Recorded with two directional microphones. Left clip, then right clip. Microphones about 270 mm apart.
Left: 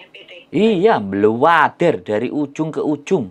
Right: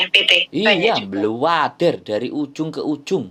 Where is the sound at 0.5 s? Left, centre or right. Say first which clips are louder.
Left 2 dB; centre.